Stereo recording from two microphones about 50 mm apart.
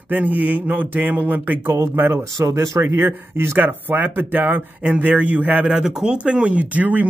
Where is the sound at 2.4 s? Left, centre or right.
Right.